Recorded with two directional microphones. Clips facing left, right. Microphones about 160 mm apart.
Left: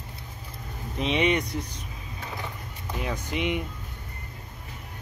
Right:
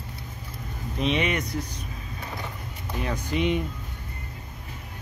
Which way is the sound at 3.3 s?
15° left (ahead or behind).